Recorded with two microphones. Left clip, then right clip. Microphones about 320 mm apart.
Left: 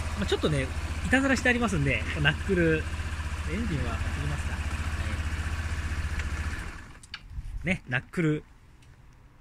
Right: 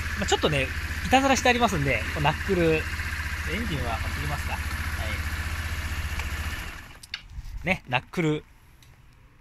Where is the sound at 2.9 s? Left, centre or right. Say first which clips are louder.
Right 7 dB; centre.